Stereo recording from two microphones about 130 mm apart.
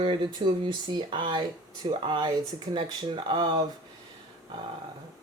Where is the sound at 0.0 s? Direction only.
40° right (ahead or behind).